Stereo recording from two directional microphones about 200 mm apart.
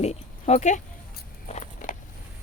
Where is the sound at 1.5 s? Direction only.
35° left (ahead or behind).